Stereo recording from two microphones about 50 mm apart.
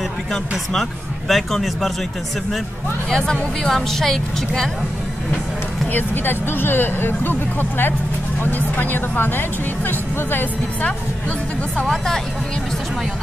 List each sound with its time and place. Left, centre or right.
1.3 s speech: centre
3.1 s a woman's voice: centre
5.9 s speech: left
11.2 s speech: left